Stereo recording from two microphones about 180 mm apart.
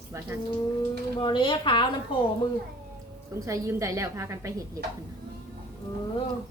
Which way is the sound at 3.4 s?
15° right (ahead or behind).